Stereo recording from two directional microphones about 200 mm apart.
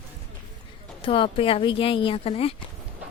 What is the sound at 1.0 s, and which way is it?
Speech, 25° left (ahead or behind).